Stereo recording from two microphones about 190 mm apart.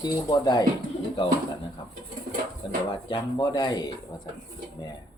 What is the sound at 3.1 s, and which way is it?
Speech, 20° left (ahead or behind).